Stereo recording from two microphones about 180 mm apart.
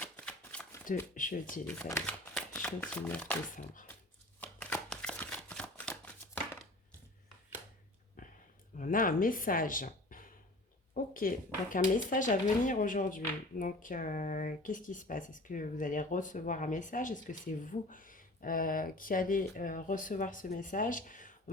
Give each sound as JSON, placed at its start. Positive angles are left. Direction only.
{"t": 0.0, "sound": "shuffling cards", "side_deg": 5}
{"t": 1.1, "sound": "speech", "side_deg": 45}
{"t": 1.9, "sound": "speech", "side_deg": 10}
{"t": 4.4, "sound": "a sound", "side_deg": 5}
{"t": 8.8, "sound": "speech", "side_deg": 50}